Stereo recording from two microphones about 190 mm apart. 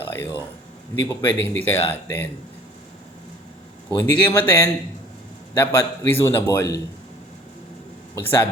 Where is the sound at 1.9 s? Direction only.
10° left (ahead or behind).